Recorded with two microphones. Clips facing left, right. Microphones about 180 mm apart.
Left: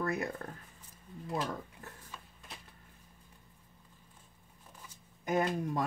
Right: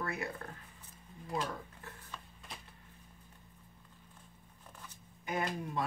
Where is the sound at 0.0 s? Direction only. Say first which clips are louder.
Left 5 dB; 40° left (ahead or behind).